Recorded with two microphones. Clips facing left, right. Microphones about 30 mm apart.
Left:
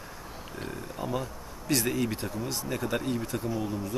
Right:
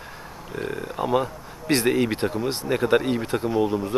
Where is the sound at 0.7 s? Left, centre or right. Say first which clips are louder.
Right 10 dB; right.